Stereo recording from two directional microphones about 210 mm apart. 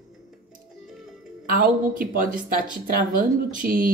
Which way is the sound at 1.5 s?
40° right (ahead or behind).